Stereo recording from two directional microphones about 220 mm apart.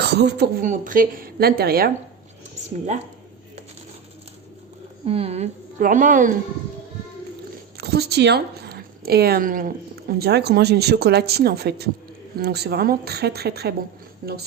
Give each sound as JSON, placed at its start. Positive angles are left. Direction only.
{"t": 0.0, "sound": "a woman's voice", "side_deg": -50}
{"t": 5.0, "sound": "a woman's voice", "side_deg": -25}
{"t": 7.8, "sound": "a woman's voice", "side_deg": -45}